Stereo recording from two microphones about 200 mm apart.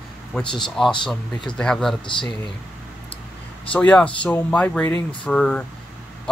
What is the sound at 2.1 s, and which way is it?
Speech, 25° left (ahead or behind).